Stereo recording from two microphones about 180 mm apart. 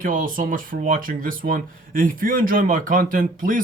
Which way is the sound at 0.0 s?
50° right (ahead or behind).